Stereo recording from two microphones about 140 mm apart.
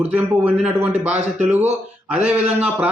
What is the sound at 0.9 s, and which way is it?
Speech, 50° right (ahead or behind).